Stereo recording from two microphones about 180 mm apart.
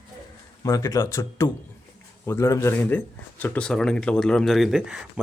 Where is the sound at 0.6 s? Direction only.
20° left (ahead or behind); by 5.0 s 5° right (ahead or behind).